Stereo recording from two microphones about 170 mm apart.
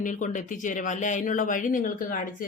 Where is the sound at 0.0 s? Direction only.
50° left (ahead or behind).